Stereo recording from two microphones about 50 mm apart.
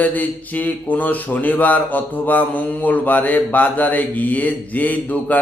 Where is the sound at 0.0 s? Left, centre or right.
Left.